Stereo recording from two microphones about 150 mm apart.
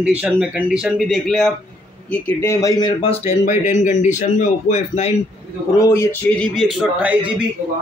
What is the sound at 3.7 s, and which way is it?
A man's voice, 55° left (ahead or behind).